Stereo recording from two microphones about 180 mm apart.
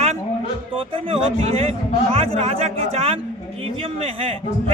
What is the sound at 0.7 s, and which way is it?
A man's voice, 30° right (ahead or behind).